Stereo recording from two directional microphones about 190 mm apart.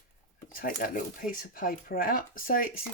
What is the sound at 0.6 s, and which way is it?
Speech, 45° left (ahead or behind).